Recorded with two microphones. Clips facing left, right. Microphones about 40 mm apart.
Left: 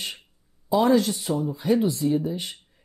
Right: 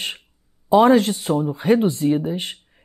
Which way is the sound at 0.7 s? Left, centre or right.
Right.